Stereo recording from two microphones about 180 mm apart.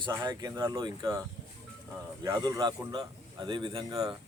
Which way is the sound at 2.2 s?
20° right (ahead or behind).